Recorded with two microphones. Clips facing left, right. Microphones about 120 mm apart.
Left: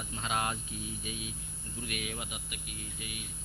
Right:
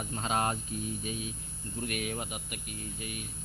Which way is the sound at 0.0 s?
40° right (ahead or behind).